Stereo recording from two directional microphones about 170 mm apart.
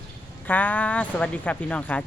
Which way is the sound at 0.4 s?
10° left (ahead or behind).